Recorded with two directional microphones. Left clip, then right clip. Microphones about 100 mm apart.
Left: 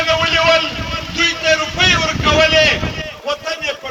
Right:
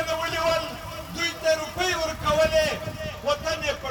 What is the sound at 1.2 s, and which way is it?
Vehicle, 55° right (ahead or behind).